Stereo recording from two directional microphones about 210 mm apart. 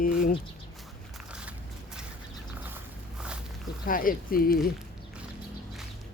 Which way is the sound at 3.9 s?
40° left (ahead or behind).